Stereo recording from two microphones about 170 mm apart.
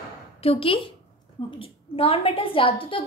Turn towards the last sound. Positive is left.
turn(degrees=30)  # may be behind; listen again after turning